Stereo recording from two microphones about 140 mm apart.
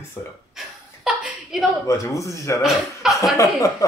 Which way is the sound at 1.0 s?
Centre (ahead or behind).